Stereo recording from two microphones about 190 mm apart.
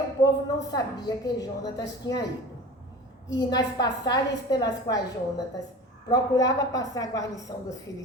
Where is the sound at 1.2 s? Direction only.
20° left (ahead or behind).